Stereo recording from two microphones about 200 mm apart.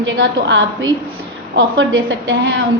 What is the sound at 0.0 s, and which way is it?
A woman's voice, 65° right (ahead or behind).